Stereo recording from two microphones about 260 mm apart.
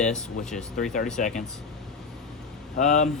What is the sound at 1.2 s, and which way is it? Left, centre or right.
Speech, left.